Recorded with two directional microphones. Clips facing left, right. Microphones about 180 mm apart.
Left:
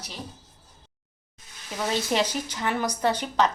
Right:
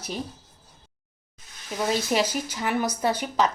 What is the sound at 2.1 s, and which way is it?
A woman's voice, 5° right (ahead or behind).